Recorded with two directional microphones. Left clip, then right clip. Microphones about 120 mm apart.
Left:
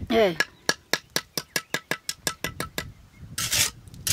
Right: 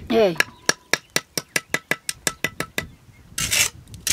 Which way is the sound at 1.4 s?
Centre (ahead or behind).